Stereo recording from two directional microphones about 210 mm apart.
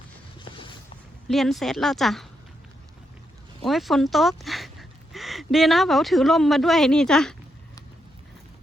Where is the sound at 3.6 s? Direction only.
Centre (ahead or behind).